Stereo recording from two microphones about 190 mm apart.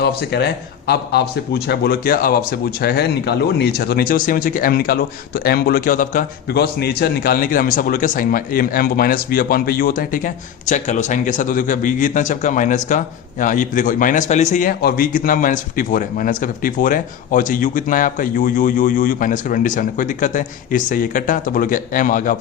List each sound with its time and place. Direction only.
0.0 s a man's voice: 60° left (ahead or behind)